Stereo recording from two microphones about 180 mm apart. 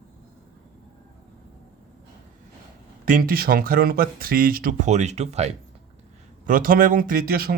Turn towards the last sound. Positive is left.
turn(degrees=-55)  # may be behind; listen again after turning